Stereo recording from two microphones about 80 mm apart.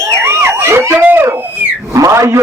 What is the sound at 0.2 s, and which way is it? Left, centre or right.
Emergency vehicle, right.